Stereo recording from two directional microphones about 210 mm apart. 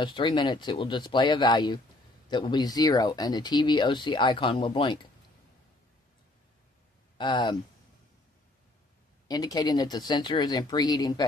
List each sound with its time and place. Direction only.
0.0 s speech: 20° left (ahead or behind)
7.2 s speech: 20° left (ahead or behind)
9.3 s speech: 20° left (ahead or behind)